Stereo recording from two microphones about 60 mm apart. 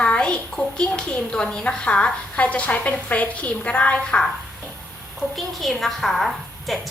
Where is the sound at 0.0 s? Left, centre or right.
Centre.